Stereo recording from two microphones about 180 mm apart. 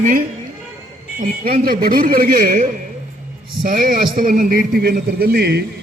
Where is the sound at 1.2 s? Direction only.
55° right (ahead or behind).